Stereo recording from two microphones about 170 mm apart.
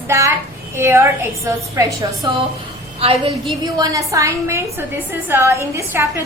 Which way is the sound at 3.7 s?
20° right (ahead or behind).